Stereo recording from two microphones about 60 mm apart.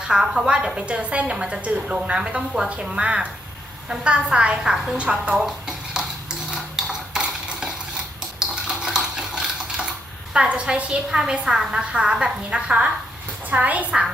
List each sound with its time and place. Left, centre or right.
0.1 s a woman's voice: centre
5.5 s a sound: centre
6.5 s cutlery: centre
8.4 s dishes: centre
10.3 s a woman's voice: centre